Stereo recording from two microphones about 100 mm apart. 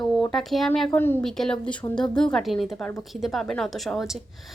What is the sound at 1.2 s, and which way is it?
A woman's voice, 5° left (ahead or behind).